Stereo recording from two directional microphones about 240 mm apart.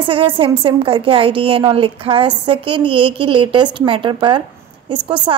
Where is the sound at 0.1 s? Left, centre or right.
Right.